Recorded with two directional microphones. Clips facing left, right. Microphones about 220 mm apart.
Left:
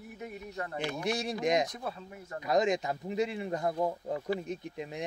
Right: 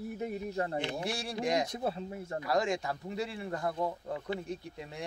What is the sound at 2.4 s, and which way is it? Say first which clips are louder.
Speech: left 4 dB; 20° left (ahead or behind).